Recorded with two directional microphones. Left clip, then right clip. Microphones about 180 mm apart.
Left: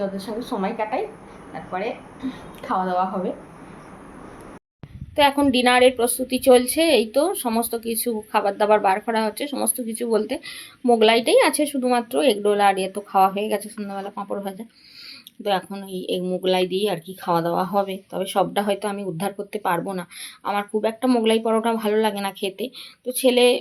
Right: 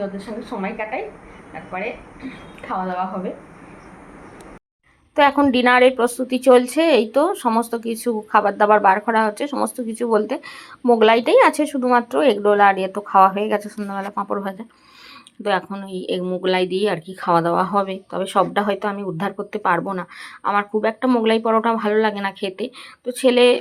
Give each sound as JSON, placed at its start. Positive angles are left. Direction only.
{"t": 0.0, "sound": "a woman's voice", "side_deg": 10}
{"t": 2.6, "sound": "a woman's voice", "side_deg": 15}
{"t": 5.1, "sound": "a woman's voice", "side_deg": -5}